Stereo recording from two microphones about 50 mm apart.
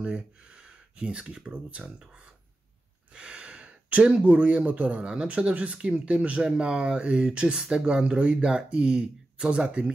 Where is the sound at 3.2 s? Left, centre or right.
Right.